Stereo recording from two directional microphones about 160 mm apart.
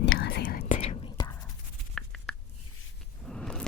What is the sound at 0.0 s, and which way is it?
Whispering, 90° left.